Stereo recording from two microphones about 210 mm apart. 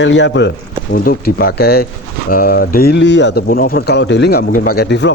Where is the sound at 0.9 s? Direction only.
45° left (ahead or behind).